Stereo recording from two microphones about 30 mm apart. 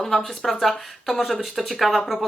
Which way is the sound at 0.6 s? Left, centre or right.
Centre.